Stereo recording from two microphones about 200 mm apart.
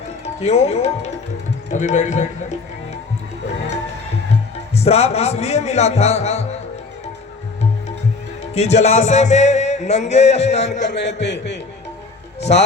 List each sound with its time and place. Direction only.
0.3 s music: 30° left (ahead or behind)
4.7 s music: 30° left (ahead or behind)
8.5 s music: 35° left (ahead or behind)
10.8 s a man's voice: 60° left (ahead or behind)